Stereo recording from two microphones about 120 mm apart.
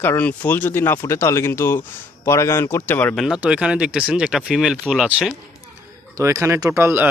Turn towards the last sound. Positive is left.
turn(degrees=-20)  # may be behind; listen again after turning